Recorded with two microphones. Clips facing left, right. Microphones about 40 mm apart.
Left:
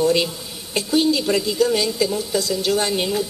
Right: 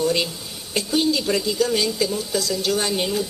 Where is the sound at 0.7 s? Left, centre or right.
Centre.